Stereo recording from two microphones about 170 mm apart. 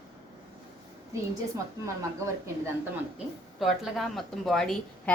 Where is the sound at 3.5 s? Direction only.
Centre (ahead or behind).